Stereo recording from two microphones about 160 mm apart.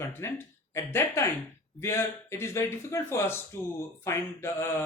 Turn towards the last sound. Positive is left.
turn(degrees=15)  # may be behind; listen again after turning